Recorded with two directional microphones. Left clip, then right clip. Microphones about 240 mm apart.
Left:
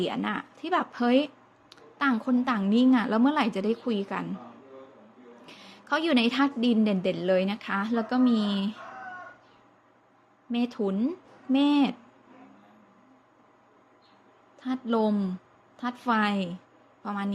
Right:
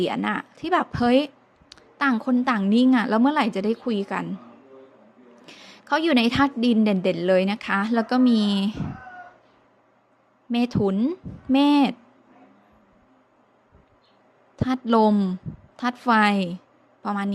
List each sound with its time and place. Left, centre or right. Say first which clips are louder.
0.0 s a woman's voice: right 5 dB; centre
5.5 s a woman's voice: right 5 dB; centre
10.5 s a woman's voice: right 6 dB; right
14.5 s a woman's voice: right 7 dB; right